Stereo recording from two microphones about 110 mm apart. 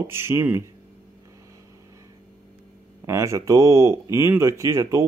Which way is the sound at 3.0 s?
25° right (ahead or behind).